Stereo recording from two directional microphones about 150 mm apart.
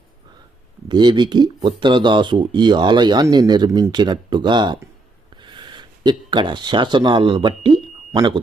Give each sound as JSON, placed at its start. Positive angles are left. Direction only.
{"t": 0.9, "sound": "speech", "side_deg": -30}